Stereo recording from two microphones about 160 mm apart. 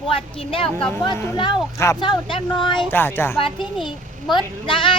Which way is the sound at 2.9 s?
15° left (ahead or behind).